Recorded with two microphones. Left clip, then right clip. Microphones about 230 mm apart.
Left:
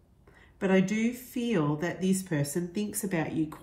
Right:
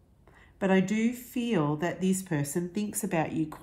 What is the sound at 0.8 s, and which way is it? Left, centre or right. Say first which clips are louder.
Speech: even; centre.